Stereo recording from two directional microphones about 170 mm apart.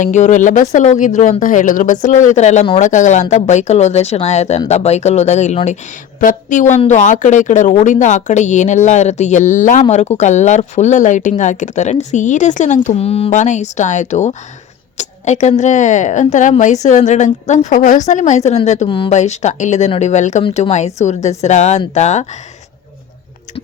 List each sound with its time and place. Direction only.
0.0 s speech: 45° left (ahead or behind)
18.9 s speech: 30° left (ahead or behind)
19.1 s speech: 40° left (ahead or behind)